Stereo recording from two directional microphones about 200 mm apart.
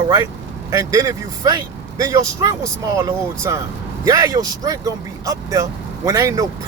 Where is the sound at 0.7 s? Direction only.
15° right (ahead or behind).